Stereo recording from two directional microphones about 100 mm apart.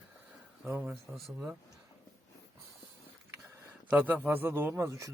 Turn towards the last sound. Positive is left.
turn(degrees=-30)  # may be behind; listen again after turning